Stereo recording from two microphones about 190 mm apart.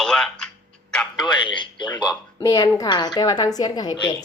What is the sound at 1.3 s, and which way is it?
A woman's voice, 25° left (ahead or behind).